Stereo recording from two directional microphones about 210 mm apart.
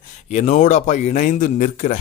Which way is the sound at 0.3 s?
35° left (ahead or behind).